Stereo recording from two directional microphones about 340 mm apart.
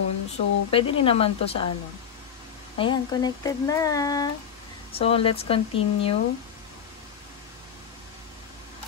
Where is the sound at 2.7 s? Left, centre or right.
Centre.